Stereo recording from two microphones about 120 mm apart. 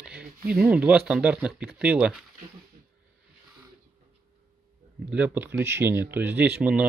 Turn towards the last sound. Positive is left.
turn(degrees=-10)  # may be behind; listen again after turning